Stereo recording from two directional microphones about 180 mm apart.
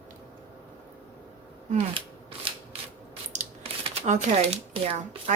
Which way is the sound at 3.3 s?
40° right (ahead or behind).